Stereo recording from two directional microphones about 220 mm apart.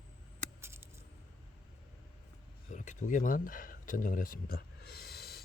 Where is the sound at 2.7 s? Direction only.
35° left (ahead or behind).